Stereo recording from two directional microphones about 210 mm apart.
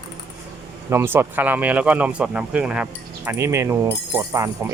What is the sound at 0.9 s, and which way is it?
Speech, 10° right (ahead or behind).